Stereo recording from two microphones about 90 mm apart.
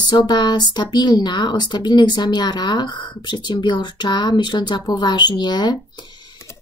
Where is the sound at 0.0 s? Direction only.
55° left (ahead or behind).